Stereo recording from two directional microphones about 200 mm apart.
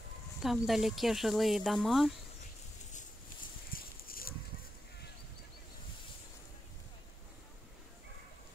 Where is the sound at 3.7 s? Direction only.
45° left (ahead or behind).